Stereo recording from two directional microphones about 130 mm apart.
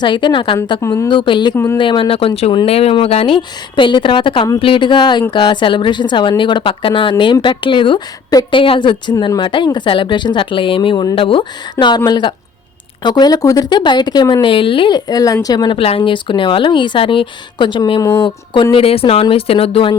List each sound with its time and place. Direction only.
0.0 s speech: 35° left (ahead or behind)
0.8 s a woman's voice: 25° left (ahead or behind)
1.0 s speech: 40° left (ahead or behind)
1.5 s a woman's voice: 20° left (ahead or behind)
1.8 s speech: 40° left (ahead or behind)